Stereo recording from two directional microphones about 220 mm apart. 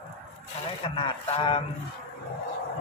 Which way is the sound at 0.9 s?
25° left (ahead or behind).